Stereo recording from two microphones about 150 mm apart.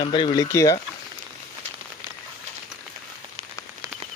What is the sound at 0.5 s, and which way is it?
Speech, 20° left (ahead or behind).